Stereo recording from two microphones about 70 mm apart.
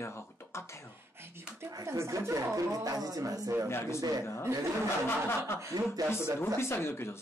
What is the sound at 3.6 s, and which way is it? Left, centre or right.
Speech, left.